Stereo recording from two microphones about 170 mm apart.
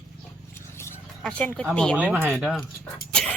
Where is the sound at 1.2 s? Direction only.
5° left (ahead or behind).